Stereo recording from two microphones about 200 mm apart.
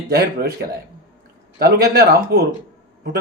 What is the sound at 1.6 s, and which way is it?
Speech, 50° right (ahead or behind).